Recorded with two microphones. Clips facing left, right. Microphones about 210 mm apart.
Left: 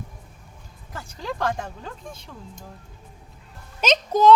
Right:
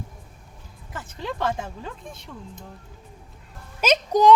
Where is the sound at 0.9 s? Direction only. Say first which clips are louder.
Even; centre (ahead or behind).